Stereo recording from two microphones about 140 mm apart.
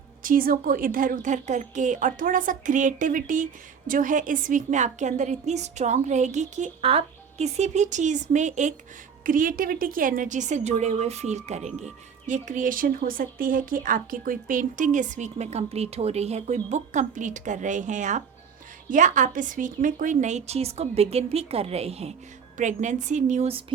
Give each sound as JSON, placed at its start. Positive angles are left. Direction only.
{"t": 0.2, "sound": "a woman's voice", "side_deg": -85}
{"t": 9.2, "sound": "a woman's voice", "side_deg": -75}
{"t": 12.2, "sound": "a woman's voice", "side_deg": -65}
{"t": 22.5, "sound": "a woman's voice", "side_deg": -60}
{"t": 23.5, "sound": "a sound", "side_deg": -40}